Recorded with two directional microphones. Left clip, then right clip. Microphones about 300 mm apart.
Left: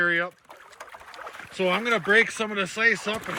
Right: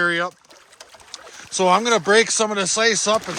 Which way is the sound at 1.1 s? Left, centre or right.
Centre.